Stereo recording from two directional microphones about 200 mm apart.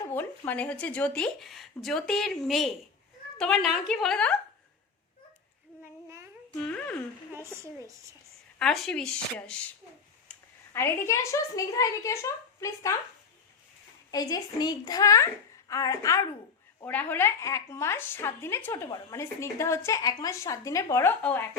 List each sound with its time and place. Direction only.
0.0 s speech: 10° left (ahead or behind)
6.7 s a sound: 5° left (ahead or behind)
7.4 s a woman's voice: 15° right (ahead or behind)
8.5 s a woman's voice: centre (ahead or behind)
14.1 s a woman's voice: 15° left (ahead or behind)